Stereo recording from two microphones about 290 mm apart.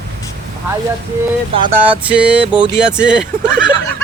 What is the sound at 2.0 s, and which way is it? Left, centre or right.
A man's voice, centre.